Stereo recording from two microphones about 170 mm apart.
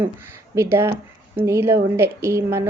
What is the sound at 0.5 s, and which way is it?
Speech, 15° right (ahead or behind).